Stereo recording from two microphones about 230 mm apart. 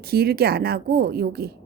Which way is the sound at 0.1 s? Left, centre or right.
Right.